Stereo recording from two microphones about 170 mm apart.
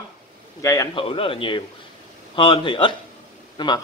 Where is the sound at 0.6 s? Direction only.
20° left (ahead or behind).